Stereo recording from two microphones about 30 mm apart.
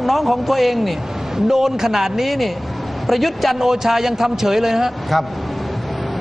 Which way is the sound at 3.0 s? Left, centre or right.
Centre.